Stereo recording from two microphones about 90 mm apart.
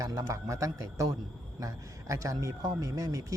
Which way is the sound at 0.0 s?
40° right (ahead or behind).